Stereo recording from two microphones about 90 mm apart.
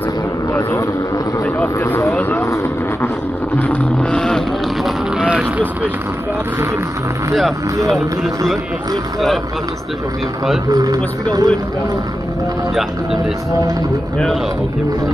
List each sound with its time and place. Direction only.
1.8 s vehicle: 30° left (ahead or behind)
3.5 s vehicle: 15° left (ahead or behind)
5.2 s a sound: 15° right (ahead or behind)
10.7 s speech: 45° right (ahead or behind)
14.1 s speech: 5° left (ahead or behind)